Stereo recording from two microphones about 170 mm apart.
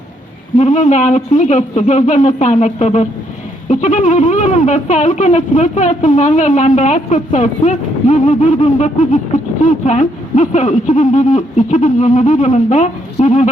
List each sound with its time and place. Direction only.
0.5 s speech: 45° left (ahead or behind)